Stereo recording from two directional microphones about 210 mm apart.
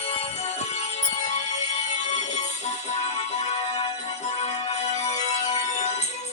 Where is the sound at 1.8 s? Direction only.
35° left (ahead or behind).